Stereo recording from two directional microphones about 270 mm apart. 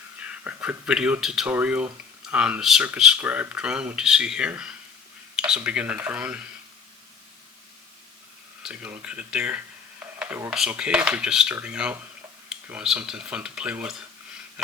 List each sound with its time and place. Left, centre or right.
0.2 s speech: centre
8.6 s speech: centre